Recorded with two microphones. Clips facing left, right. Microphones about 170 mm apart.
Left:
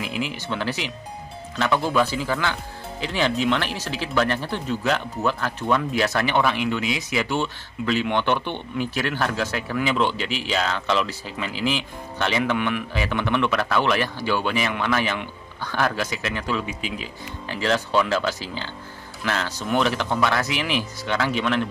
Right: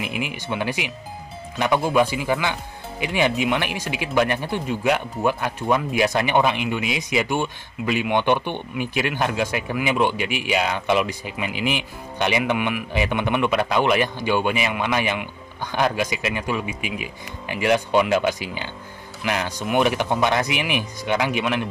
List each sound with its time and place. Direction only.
0.0 s speech: 15° right (ahead or behind)